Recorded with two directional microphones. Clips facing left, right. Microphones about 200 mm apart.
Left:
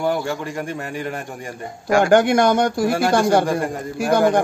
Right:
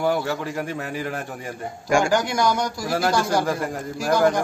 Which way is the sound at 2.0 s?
60° left (ahead or behind).